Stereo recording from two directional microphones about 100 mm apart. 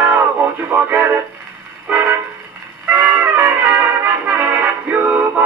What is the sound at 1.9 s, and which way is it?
Vehicle, 15° right (ahead or behind).